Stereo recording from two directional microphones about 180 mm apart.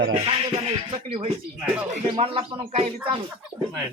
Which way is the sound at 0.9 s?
30° right (ahead or behind).